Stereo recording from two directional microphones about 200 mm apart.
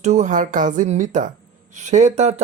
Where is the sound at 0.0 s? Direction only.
35° right (ahead or behind).